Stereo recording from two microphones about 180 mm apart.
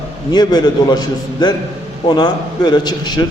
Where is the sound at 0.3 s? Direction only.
25° left (ahead or behind).